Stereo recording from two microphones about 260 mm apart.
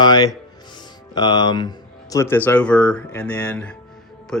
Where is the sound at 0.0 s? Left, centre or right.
Centre.